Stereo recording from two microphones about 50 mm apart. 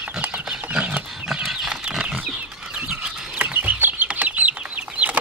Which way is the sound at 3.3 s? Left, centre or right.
Right.